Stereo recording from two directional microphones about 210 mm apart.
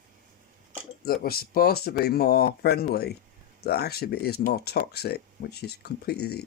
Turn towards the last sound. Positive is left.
turn(degrees=50)  # may be behind; listen again after turning